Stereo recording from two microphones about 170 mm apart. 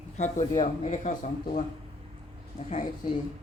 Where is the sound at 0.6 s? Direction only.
45° left (ahead or behind).